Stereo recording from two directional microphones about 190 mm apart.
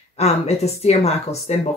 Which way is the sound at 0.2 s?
35° left (ahead or behind).